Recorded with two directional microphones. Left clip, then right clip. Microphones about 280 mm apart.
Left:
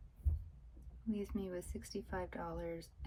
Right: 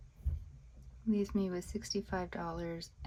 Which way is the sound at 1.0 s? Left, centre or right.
Centre.